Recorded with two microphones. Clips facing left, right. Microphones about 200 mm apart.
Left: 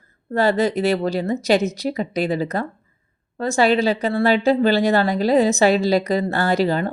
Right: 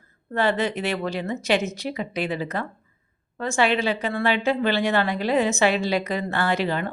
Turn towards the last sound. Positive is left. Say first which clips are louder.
# left 5 dB
turn(degrees=35)  # may be behind; listen again after turning